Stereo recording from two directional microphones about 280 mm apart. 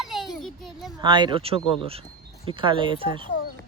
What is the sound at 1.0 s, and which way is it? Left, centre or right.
Speech, centre.